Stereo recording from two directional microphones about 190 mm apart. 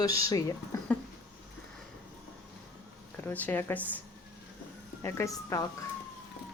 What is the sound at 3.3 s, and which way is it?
Speech, 10° left (ahead or behind).